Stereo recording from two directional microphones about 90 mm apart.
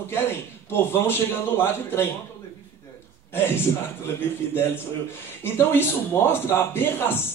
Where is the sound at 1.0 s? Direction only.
25° left (ahead or behind).